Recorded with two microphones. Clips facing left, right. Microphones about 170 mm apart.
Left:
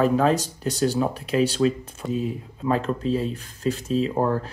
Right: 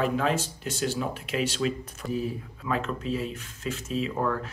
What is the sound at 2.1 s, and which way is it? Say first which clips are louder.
Speech: left 3 dB; 20° left (ahead or behind).